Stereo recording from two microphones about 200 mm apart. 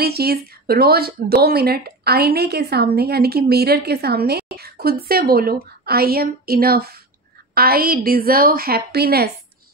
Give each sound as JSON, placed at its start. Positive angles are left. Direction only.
{"t": 0.0, "sound": "speech", "side_deg": -50}